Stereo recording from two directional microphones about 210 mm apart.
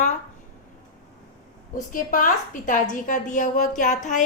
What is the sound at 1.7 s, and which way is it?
A woman's voice, 40° left (ahead or behind).